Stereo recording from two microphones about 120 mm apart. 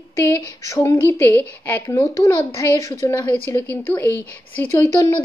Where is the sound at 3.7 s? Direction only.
15° left (ahead or behind).